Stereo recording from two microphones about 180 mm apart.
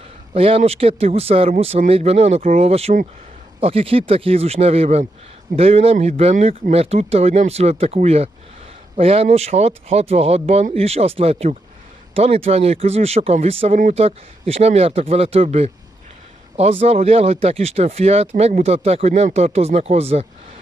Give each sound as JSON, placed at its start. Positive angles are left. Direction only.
{"t": 0.3, "sound": "speech", "side_deg": -35}
{"t": 13.7, "sound": "speech", "side_deg": -45}
{"t": 14.0, "sound": "speech", "side_deg": -35}